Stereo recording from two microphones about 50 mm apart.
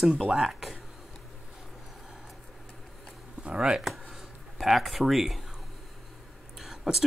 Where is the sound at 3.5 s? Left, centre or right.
Centre.